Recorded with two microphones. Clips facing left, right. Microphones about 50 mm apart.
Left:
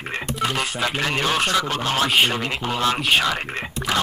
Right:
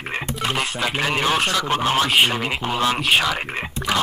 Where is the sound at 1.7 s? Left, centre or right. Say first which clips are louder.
Right 2 dB; centre.